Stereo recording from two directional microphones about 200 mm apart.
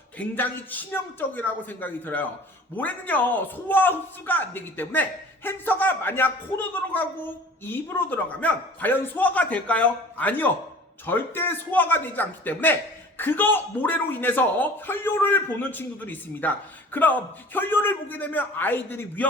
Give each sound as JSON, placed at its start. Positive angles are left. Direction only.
{"t": 0.2, "sound": "a man's voice", "side_deg": 10}